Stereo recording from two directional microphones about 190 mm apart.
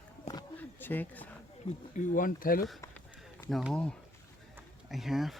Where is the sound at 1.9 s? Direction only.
45° left (ahead or behind).